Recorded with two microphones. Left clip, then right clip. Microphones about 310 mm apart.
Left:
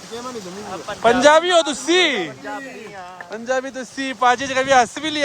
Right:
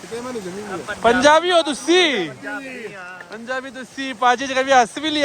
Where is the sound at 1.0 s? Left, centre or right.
Centre.